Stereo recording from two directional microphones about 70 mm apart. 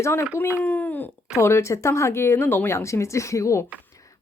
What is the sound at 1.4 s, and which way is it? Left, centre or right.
A woman's voice, left.